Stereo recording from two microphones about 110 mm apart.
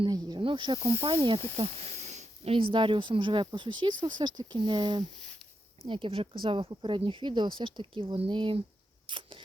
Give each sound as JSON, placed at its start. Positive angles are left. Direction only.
{"t": 0.0, "sound": "speech", "side_deg": -45}
{"t": 1.5, "sound": "speech", "side_deg": -75}
{"t": 5.8, "sound": "speech", "side_deg": -55}
{"t": 9.0, "sound": "camera", "side_deg": -50}